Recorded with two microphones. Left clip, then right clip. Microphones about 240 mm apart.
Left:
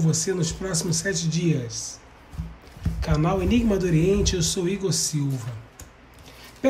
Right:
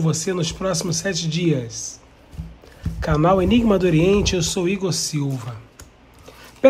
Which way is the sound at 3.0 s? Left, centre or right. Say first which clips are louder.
Right 8 dB; centre.